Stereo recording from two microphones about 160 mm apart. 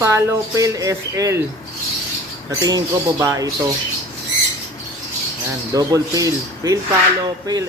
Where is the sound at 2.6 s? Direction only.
20° right (ahead or behind).